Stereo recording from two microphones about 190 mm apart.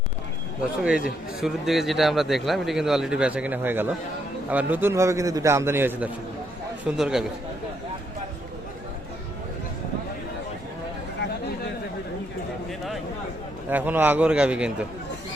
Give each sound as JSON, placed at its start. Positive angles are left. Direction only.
{"t": 0.8, "sound": "a man's voice", "side_deg": -5}
{"t": 13.7, "sound": "a man's voice", "side_deg": -10}